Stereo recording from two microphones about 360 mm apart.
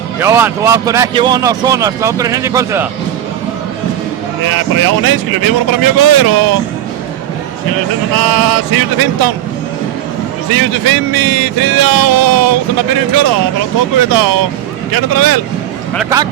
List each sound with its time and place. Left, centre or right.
0.2 s speech: centre
4.4 s speech: right
8.1 s speech: right
10.5 s speech: right
16.0 s speech: centre